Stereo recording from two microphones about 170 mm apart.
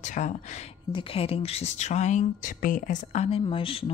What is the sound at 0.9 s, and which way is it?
Speech, 30° left (ahead or behind).